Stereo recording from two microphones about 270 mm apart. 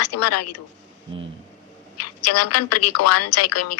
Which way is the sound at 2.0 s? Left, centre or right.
Left.